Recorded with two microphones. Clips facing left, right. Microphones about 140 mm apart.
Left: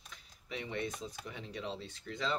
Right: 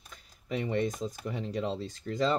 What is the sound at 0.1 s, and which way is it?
Speech, 40° right (ahead or behind).